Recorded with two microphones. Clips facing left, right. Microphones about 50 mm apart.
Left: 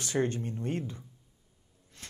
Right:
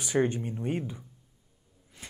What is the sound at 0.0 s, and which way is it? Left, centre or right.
A woman's voice, centre.